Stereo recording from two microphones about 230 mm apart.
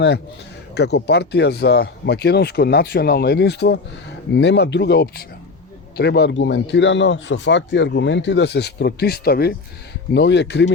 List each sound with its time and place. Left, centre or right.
0.7 s speech: left